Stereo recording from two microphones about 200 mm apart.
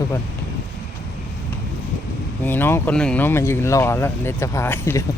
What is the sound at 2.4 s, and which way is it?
Speech, 10° left (ahead or behind).